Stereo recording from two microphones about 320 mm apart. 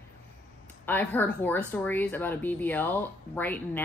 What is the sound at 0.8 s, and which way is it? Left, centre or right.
Speech, centre.